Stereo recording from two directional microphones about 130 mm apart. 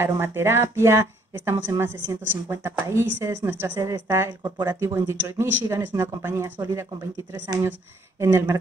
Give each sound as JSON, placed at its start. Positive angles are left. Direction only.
{"t": 0.0, "sound": "speech", "side_deg": -20}